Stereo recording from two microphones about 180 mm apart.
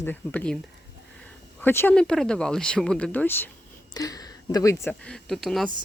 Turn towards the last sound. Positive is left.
turn(degrees=0)  # may be behind; listen again after turning